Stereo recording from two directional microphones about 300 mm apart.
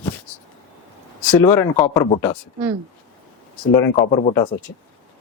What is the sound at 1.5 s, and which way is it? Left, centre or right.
Speech, centre.